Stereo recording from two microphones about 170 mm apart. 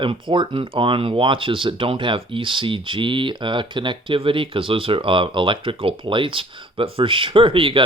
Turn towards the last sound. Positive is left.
turn(degrees=-30)  # may be behind; listen again after turning